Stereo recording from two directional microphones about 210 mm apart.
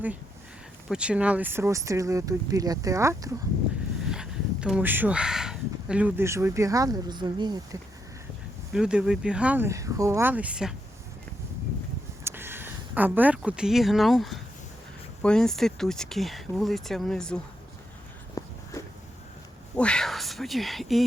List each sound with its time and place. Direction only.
0.9 s speech: 5° right (ahead or behind)
4.1 s speech: 5° right (ahead or behind); by 7.8 s 20° right (ahead or behind)
8.7 s speech: 5° right (ahead or behind)
12.2 s speech: 10° right (ahead or behind)
18.4 s a sound: 15° left (ahead or behind)
19.7 s speech: 5° left (ahead or behind)